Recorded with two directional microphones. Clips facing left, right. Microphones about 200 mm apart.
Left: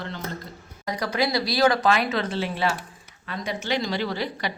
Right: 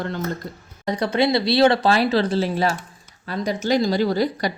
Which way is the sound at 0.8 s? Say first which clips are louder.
Right 6 dB; 30° right (ahead or behind).